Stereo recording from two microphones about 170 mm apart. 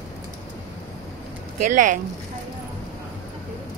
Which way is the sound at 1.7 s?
50° right (ahead or behind).